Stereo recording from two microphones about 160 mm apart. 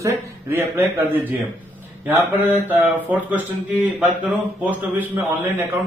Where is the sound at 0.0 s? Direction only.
15° right (ahead or behind).